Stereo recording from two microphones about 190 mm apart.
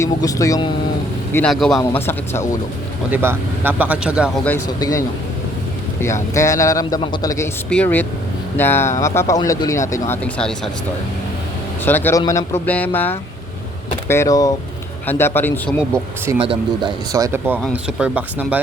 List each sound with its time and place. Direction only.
0.0 s speech: 15° left (ahead or behind)
1.3 s a man's voice: 5° left (ahead or behind)
1.8 s speech: 10° left (ahead or behind)
3.1 s speech: 10° right (ahead or behind)
4.4 s speech: 15° left (ahead or behind)
6.3 s speech: 15° left (ahead or behind)
11.9 s speech: 10° left (ahead or behind)
16.4 s speech: 25° right (ahead or behind); by 18.6 s 5° right (ahead or behind)